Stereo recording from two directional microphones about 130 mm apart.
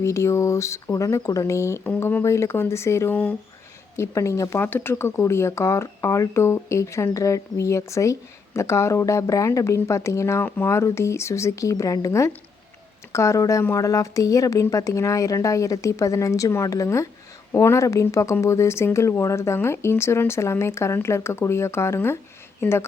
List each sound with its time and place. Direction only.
0.0 s speech: 20° left (ahead or behind)